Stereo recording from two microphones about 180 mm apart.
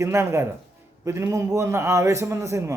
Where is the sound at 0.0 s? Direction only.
15° right (ahead or behind).